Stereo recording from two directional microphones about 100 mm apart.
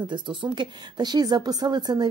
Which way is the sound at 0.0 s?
50° right (ahead or behind).